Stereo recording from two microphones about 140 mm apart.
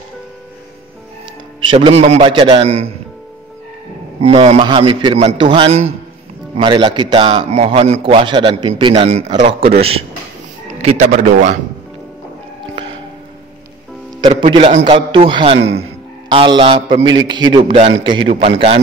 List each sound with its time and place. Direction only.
1.6 s a man's voice: 35° right (ahead or behind)
2.2 s a man's voice: 40° right (ahead or behind)
4.2 s a man's voice: 45° right (ahead or behind)
5.7 s a man's voice: 50° right (ahead or behind)
6.5 s a man's voice: 35° right (ahead or behind)
10.8 s speech: 55° right (ahead or behind)
14.4 s a man's voice: 35° right (ahead or behind)
14.7 s a man's voice: 50° right (ahead or behind)
15.0 s a man's voice: 35° right (ahead or behind)